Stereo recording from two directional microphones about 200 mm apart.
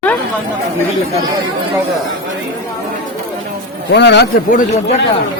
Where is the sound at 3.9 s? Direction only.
60° left (ahead or behind).